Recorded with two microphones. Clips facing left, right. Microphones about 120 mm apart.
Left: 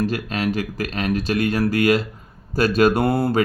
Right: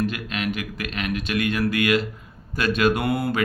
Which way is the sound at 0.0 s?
35° left (ahead or behind).